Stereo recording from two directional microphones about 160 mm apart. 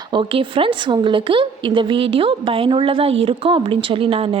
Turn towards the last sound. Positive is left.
turn(degrees=-35)  # may be behind; listen again after turning